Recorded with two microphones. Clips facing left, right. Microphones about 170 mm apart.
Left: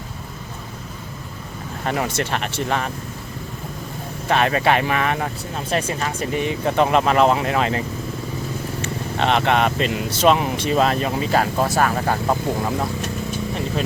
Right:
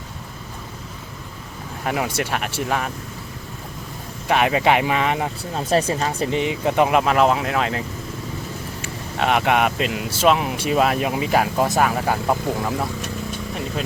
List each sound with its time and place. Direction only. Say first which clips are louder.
1.8 s speech: even; 5° right (ahead or behind)
4.3 s speech: even; 15° right (ahead or behind)
5.5 s speech: right 4 dB; 30° right (ahead or behind)
6.4 s speech: left 1 dB; 15° right (ahead or behind)